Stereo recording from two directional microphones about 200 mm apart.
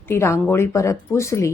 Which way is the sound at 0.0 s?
10° left (ahead or behind).